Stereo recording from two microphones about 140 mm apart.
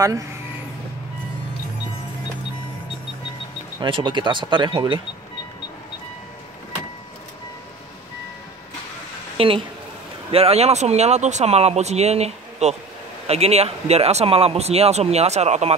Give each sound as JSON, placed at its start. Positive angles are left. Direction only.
{"t": 3.8, "sound": "speech", "side_deg": -35}
{"t": 9.4, "sound": "speech", "side_deg": -40}